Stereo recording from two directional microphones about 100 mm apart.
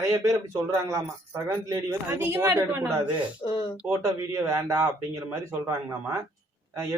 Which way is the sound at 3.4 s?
50° left (ahead or behind).